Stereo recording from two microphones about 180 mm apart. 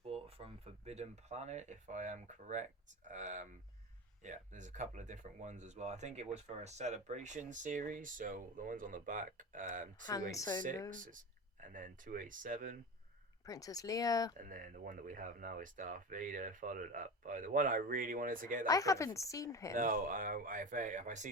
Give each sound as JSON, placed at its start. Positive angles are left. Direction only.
{"t": 0.0, "sound": "speech", "side_deg": -30}
{"t": 10.3, "sound": "speech", "side_deg": 20}
{"t": 10.9, "sound": "speech", "side_deg": -45}
{"t": 13.4, "sound": "speech", "side_deg": 20}
{"t": 14.3, "sound": "speech", "side_deg": -50}
{"t": 18.6, "sound": "speech", "side_deg": 20}
{"t": 19.7, "sound": "speech", "side_deg": -50}